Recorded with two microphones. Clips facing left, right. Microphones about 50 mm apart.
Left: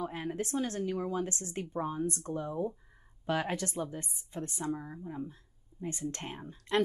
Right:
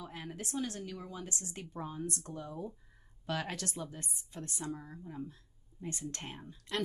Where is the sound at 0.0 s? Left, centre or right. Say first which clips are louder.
Left 8 dB; left.